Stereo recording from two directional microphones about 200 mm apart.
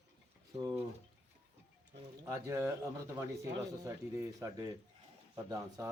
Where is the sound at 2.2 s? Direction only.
15° right (ahead or behind).